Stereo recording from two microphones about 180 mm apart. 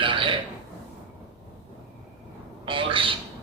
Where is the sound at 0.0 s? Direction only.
30° right (ahead or behind).